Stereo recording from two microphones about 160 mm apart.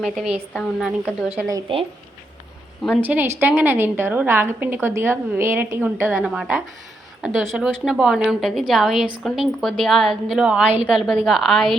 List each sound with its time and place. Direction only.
0.0 s a woman's voice: 5° right (ahead or behind)
1.7 s speech: 35° right (ahead or behind)
3.0 s a woman's voice: 10° right (ahead or behind)
6.1 s a woman's voice: 5° right (ahead or behind)